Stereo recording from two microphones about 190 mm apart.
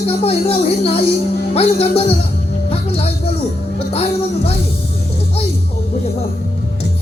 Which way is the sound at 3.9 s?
30° left (ahead or behind).